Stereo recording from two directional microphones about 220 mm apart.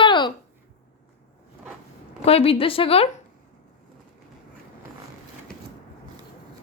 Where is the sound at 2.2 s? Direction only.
25° left (ahead or behind).